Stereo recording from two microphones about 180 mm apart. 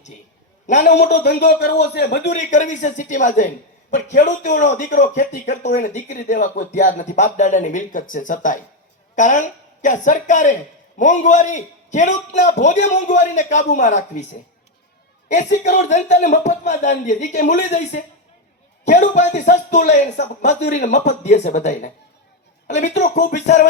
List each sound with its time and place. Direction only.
0.9 s speech: 65° left (ahead or behind)
2.3 s a man's voice: 45° left (ahead or behind)
15.5 s a man's voice: 40° left (ahead or behind)